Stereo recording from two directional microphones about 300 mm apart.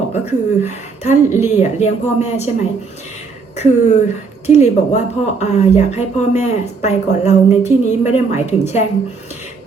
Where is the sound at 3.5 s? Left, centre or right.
Left.